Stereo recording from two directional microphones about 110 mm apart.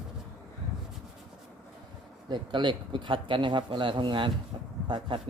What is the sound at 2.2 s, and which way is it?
Speech, 45° right (ahead or behind).